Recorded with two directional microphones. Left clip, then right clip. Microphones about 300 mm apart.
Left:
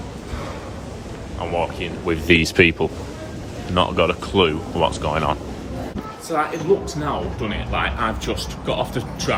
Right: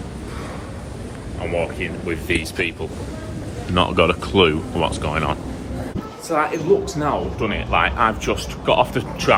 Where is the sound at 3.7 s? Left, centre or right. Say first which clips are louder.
Right 1 dB; centre.